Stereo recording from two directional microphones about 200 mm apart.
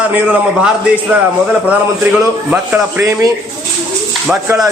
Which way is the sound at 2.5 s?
10° right (ahead or behind).